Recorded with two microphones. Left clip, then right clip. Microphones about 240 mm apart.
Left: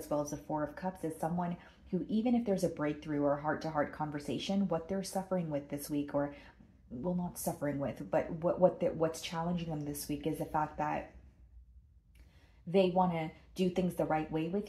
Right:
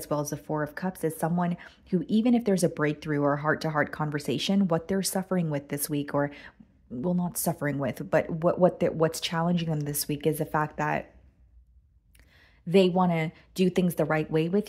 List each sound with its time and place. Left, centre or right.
0.1 s speech: right
12.6 s speech: right